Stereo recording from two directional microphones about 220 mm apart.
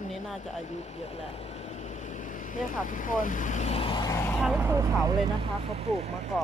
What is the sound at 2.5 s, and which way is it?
Speech, 35° left (ahead or behind).